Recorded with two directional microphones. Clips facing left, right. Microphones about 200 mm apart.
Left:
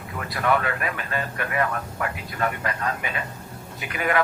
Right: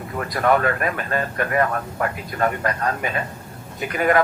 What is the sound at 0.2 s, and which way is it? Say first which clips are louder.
Speech: right 5 dB; 45° right (ahead or behind).